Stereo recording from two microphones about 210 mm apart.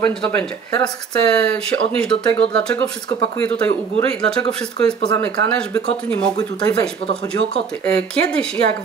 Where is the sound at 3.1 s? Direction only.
20° left (ahead or behind).